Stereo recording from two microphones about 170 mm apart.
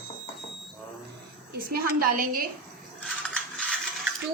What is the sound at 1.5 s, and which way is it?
Speech, 60° right (ahead or behind).